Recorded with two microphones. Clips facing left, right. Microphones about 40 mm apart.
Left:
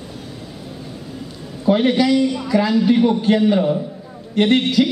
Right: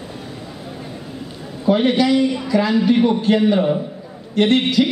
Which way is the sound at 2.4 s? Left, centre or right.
Centre.